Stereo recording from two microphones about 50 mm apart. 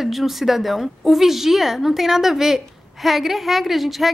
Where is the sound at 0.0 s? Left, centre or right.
Centre.